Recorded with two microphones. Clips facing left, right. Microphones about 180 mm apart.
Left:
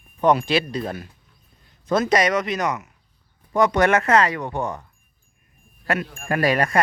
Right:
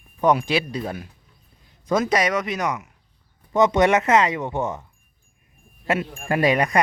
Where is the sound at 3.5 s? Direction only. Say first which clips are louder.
Right 1 dB; 20° right (ahead or behind).